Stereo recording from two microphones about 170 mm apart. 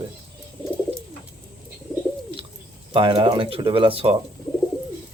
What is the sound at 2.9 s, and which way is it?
Speech, 30° right (ahead or behind).